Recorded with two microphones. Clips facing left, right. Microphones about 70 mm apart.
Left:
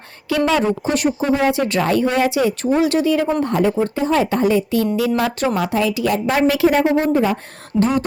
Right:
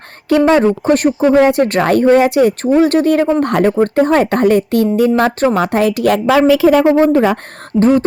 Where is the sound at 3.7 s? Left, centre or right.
Right.